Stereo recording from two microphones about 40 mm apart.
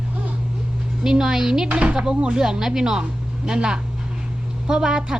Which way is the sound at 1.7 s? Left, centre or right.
Right.